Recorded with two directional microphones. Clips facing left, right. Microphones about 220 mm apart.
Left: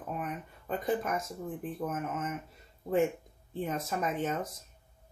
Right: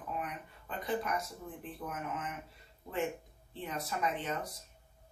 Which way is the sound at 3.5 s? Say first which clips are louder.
Left 6 dB; 45° left (ahead or behind).